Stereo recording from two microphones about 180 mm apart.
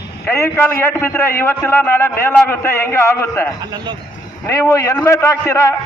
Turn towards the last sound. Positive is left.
turn(degrees=15)  # may be behind; listen again after turning